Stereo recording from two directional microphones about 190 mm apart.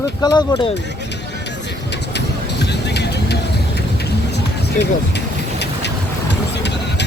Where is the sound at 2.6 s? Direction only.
65° left (ahead or behind).